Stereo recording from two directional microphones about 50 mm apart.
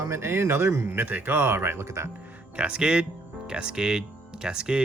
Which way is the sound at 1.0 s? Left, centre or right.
Right.